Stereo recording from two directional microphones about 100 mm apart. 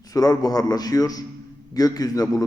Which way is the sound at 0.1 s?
40° left (ahead or behind).